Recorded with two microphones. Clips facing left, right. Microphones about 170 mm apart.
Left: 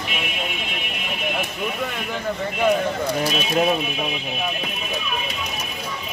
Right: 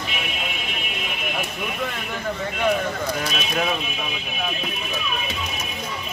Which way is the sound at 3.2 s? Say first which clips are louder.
Left 5 dB; 25° left (ahead or behind).